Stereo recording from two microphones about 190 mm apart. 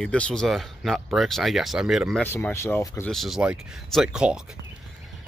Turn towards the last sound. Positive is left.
turn(degrees=-5)  # may be behind; listen again after turning